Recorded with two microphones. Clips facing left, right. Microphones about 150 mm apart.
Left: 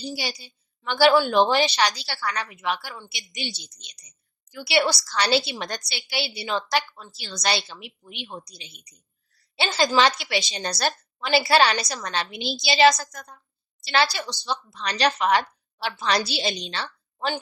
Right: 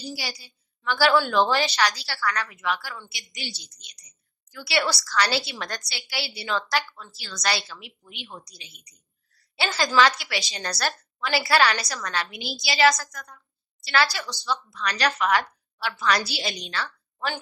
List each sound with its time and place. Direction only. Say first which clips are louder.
0.0 s a woman's voice: left 3 dB; 20° left (ahead or behind)